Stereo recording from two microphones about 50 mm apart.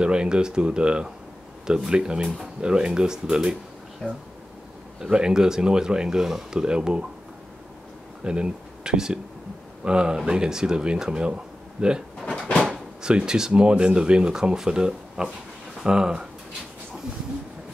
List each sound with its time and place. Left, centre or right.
0.0 s speech: centre
2.2 s speech: centre
2.6 s speech: centre
4.0 s speech: centre
5.1 s speech: centre
8.2 s speech: centre
13.0 s speech: centre